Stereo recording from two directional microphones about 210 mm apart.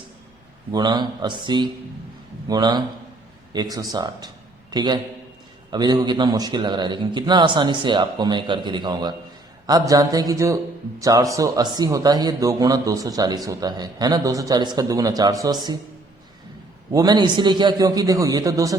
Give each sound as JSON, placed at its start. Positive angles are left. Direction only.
{"t": 0.7, "sound": "a man's voice", "side_deg": -20}
{"t": 16.9, "sound": "a man's voice", "side_deg": -20}